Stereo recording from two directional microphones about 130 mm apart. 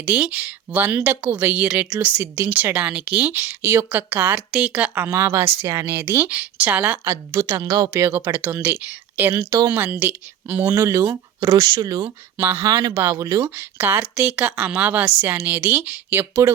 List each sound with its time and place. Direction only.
0.0 s a woman's voice: 10° right (ahead or behind); by 12.1 s 30° right (ahead or behind)
12.4 s a woman's voice: 20° right (ahead or behind)